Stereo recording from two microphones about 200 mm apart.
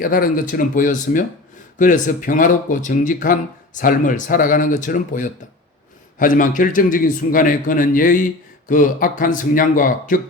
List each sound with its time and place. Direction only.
0.0 s a man's voice: 45° left (ahead or behind)